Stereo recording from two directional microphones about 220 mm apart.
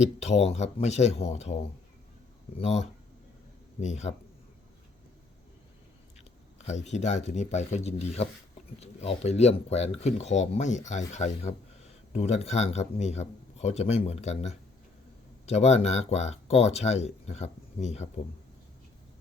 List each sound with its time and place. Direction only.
0.0 s speech: 30° left (ahead or behind)
2.6 s speech: 30° left (ahead or behind)
6.7 s speech: 30° left (ahead or behind)